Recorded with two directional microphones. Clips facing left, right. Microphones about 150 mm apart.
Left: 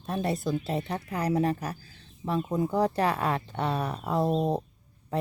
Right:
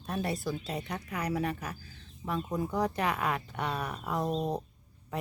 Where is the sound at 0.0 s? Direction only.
25° left (ahead or behind).